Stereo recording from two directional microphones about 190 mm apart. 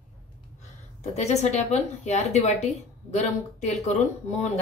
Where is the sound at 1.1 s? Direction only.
35° left (ahead or behind).